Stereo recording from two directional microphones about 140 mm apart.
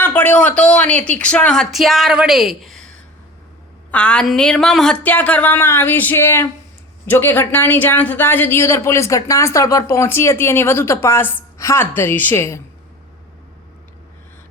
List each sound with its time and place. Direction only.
0.0 s speech: 15° left (ahead or behind)
3.9 s a woman's voice: 10° left (ahead or behind)